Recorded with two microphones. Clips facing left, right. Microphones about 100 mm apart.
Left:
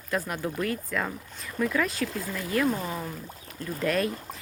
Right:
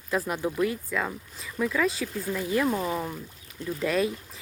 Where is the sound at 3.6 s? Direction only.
45° left (ahead or behind).